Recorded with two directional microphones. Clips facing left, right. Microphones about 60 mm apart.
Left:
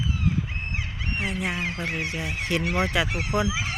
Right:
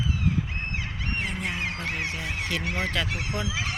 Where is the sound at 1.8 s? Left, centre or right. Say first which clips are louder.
Left 2 dB; left.